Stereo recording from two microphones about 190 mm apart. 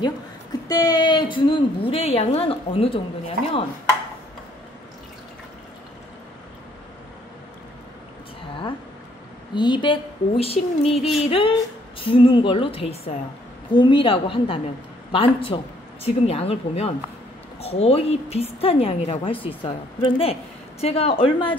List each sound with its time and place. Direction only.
0.7 s a woman's voice: 20° left (ahead or behind)
9.5 s a woman's voice: 25° left (ahead or behind)